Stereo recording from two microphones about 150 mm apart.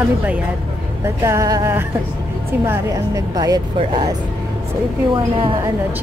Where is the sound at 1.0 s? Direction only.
20° right (ahead or behind).